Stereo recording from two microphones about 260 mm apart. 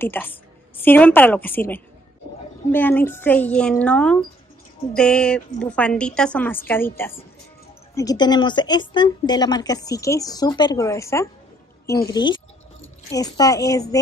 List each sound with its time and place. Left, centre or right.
0.0 s a woman's voice: centre